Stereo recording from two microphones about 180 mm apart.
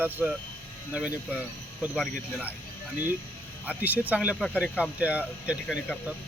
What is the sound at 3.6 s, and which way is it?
Speech, 10° right (ahead or behind).